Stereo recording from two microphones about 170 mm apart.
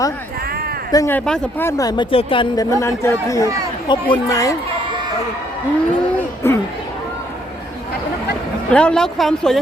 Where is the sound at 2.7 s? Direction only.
15° left (ahead or behind).